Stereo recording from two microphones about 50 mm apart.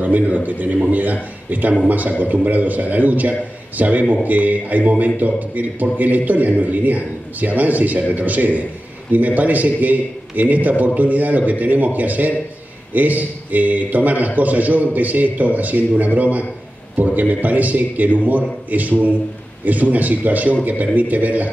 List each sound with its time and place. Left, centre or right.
0.0 s a man's voice: right